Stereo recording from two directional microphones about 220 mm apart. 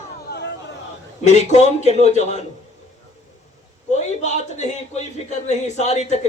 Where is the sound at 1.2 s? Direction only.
30° left (ahead or behind).